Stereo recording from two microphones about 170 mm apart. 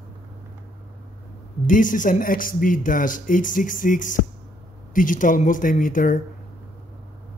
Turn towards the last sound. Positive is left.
turn(degrees=55)  # may be behind; listen again after turning